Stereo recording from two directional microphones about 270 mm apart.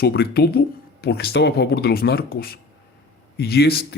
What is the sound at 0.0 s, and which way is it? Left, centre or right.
Speech, left.